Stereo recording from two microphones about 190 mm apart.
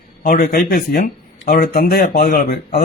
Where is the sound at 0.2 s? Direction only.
45° left (ahead or behind).